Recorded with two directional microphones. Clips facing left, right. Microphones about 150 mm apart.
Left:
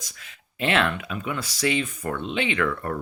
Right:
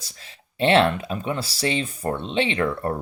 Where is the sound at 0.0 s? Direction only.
30° right (ahead or behind).